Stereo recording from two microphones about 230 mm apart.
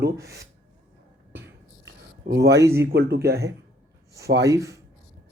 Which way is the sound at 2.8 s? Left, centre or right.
Right.